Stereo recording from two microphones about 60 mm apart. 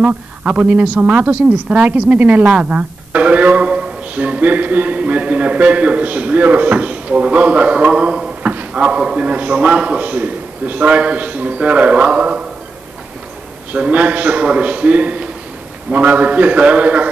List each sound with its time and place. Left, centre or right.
0.0 s speech: centre
13.7 s speech: right